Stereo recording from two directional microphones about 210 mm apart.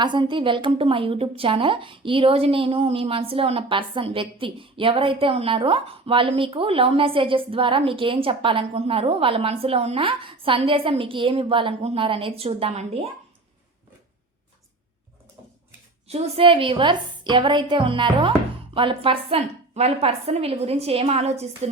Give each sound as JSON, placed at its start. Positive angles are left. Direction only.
{"t": 0.0, "sound": "a woman's voice", "side_deg": -20}
{"t": 16.0, "sound": "a woman's voice", "side_deg": -30}